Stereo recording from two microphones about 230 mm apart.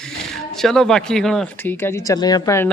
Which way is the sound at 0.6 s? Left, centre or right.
Centre.